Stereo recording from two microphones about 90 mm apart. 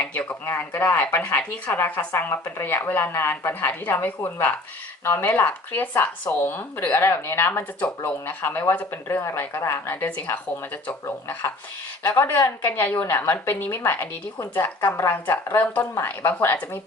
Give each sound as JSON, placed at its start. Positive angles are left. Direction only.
{"t": 0.0, "sound": "a sound", "side_deg": 15}
{"t": 0.4, "sound": "speech", "side_deg": 25}
{"t": 7.8, "sound": "speech", "side_deg": 15}